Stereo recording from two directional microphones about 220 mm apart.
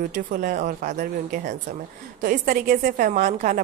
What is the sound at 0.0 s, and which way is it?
A woman's voice, 40° right (ahead or behind).